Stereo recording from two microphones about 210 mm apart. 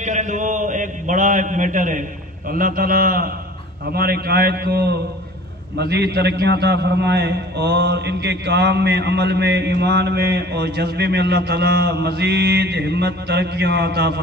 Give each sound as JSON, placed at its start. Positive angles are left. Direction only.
{"t": 0.0, "sound": "a man's voice", "side_deg": -35}